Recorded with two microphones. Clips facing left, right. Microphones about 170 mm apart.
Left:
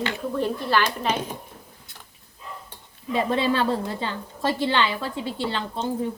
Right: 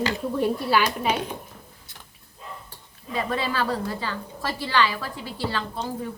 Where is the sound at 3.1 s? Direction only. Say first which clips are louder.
Left 4 dB; 25° left (ahead or behind).